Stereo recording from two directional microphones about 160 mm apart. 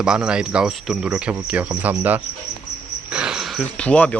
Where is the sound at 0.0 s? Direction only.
5° right (ahead or behind).